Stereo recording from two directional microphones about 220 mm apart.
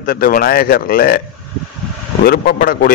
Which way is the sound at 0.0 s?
40° left (ahead or behind).